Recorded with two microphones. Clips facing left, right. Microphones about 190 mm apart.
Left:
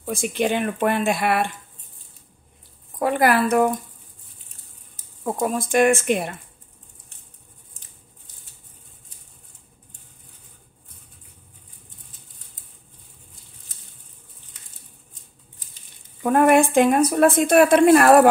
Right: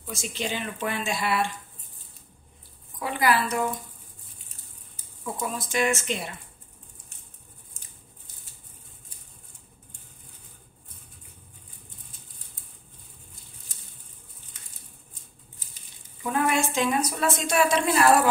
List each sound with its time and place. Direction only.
0.0 s a woman's voice: 55° left (ahead or behind)
3.0 s a woman's voice: 55° left (ahead or behind)
5.2 s a woman's voice: 50° left (ahead or behind)
16.2 s a woman's voice: 55° left (ahead or behind)